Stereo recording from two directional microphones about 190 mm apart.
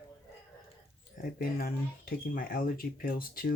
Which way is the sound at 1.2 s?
50° left (ahead or behind).